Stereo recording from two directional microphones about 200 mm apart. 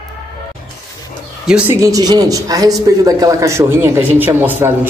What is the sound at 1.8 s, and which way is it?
A man's voice, 15° right (ahead or behind).